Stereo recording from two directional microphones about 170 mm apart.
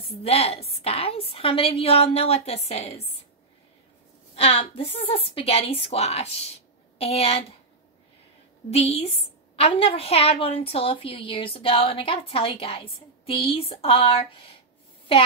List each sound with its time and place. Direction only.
0.2 s a woman's voice: 35° left (ahead or behind)
4.4 s a woman's voice: 35° left (ahead or behind)
8.6 s a woman's voice: 35° left (ahead or behind)